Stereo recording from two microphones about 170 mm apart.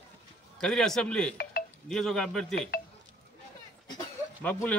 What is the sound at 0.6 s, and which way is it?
Speech, 5° left (ahead or behind).